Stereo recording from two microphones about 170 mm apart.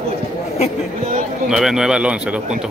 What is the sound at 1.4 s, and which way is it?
Speech, 5° right (ahead or behind).